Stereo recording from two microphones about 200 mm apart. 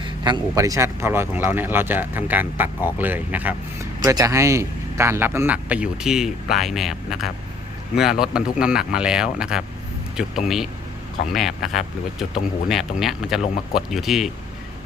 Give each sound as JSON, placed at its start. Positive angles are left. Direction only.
{"t": 0.0, "sound": "speech", "side_deg": -20}